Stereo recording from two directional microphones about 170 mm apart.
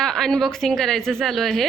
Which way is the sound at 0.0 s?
5° left (ahead or behind).